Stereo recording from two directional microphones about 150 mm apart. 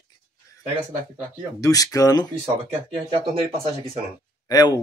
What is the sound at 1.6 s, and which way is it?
Speech, 25° left (ahead or behind).